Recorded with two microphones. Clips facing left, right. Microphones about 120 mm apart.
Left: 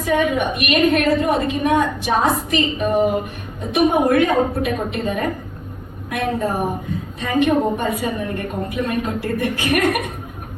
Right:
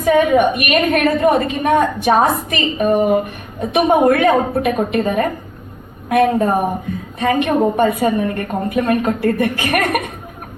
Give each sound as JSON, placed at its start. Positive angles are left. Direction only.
{"t": 0.0, "sound": "a woman's voice", "side_deg": -55}